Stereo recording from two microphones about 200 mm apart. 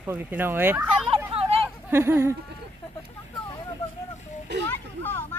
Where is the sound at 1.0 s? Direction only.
25° right (ahead or behind).